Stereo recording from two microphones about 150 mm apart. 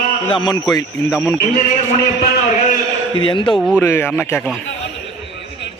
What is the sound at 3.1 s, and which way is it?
Speech, 35° left (ahead or behind).